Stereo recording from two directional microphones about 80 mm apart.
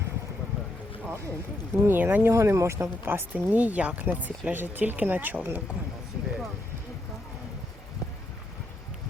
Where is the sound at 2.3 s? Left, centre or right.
Right.